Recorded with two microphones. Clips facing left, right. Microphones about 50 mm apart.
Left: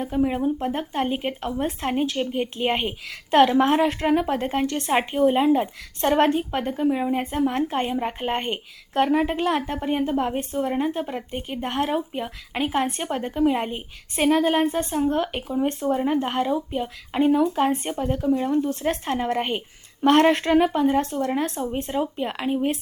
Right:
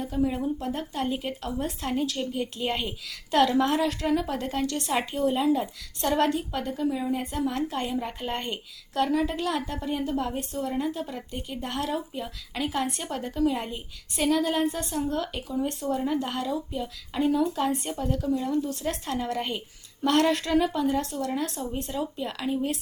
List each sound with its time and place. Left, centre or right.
0.0 s a woman's voice: left